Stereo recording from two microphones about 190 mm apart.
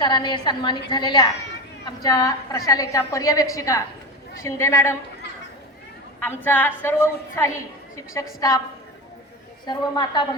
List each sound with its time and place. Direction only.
0.0 s a woman's voice: 25° left (ahead or behind)
6.1 s a woman's voice: 10° left (ahead or behind)
9.6 s a woman's voice: 25° left (ahead or behind)